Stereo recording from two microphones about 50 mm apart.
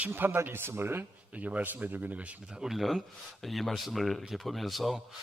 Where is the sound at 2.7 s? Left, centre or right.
Centre.